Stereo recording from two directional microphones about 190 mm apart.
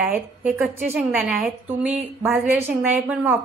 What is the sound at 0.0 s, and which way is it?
A woman's voice, 5° right (ahead or behind).